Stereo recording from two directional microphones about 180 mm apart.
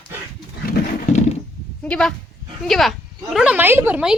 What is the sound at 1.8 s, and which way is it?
A woman's voice, 5° left (ahead or behind).